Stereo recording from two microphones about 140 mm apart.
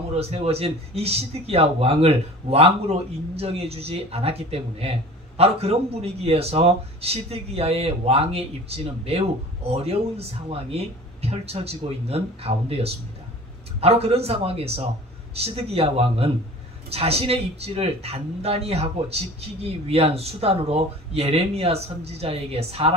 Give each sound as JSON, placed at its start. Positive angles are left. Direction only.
{"t": 0.2, "sound": "a man's voice", "side_deg": -50}